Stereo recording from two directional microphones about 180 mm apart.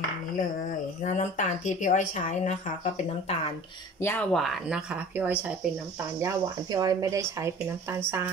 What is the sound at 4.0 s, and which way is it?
Speech, 10° left (ahead or behind).